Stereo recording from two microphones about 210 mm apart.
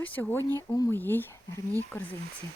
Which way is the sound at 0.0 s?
10° left (ahead or behind).